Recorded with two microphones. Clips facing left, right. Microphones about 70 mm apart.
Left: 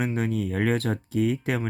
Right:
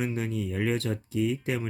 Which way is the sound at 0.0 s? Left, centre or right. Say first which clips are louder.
Left 4 dB; left.